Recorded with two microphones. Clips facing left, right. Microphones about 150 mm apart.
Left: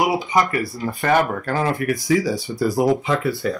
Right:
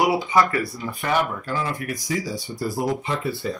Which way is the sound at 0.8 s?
50° left (ahead or behind).